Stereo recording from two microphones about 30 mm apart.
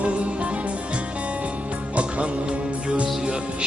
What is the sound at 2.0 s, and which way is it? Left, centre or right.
Music, right.